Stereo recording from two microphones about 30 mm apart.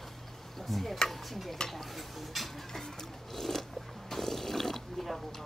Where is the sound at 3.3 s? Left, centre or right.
Centre.